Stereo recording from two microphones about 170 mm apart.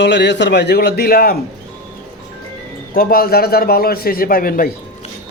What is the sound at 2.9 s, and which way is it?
A man's voice, 60° left (ahead or behind).